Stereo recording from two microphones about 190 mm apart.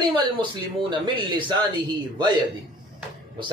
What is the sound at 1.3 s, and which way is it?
Speech, 25° right (ahead or behind).